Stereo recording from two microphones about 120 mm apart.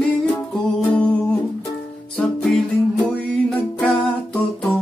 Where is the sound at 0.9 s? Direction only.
10° left (ahead or behind).